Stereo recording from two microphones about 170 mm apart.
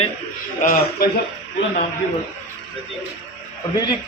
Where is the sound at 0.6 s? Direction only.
60° left (ahead or behind).